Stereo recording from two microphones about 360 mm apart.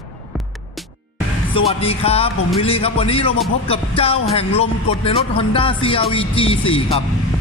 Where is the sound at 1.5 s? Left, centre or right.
Centre.